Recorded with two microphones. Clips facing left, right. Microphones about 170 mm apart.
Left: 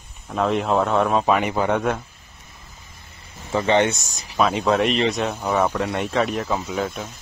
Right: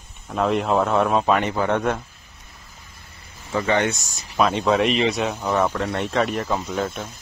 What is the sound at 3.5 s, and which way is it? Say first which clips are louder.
Speech: left 2 dB; 25° left (ahead or behind).